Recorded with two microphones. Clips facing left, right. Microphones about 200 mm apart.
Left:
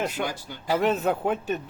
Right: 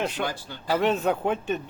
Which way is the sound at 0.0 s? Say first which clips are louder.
Even; 10° left (ahead or behind).